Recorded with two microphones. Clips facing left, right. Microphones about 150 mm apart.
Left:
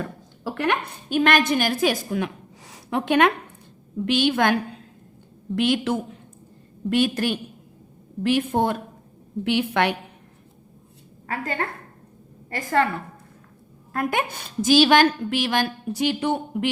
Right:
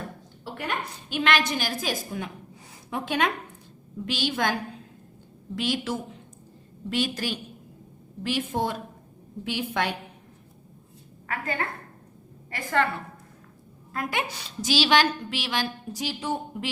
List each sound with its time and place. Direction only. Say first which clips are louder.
0.0 s a sound: left 7 dB; 90° left
1.1 s a woman's voice: left 6 dB; 45° left (ahead or behind)
9.4 s a woman's voice: left 7 dB; 65° left (ahead or behind)
11.3 s a woman's voice: left 3 dB; 35° left (ahead or behind)
13.9 s a woman's voice: left 5 dB; 50° left (ahead or behind)